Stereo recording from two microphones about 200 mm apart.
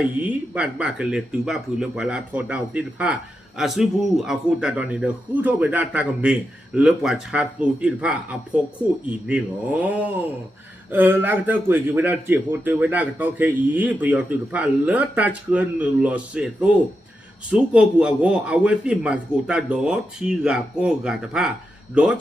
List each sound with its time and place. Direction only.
0.2 s a man's voice: 5° right (ahead or behind)